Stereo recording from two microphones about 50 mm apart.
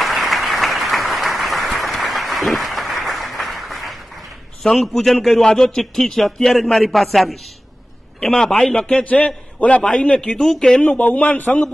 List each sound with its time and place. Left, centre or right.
0.0 s applause: centre
4.6 s a man's voice: centre; by 10.3 s left
10.3 s speech: centre
10.8 s a man's voice: left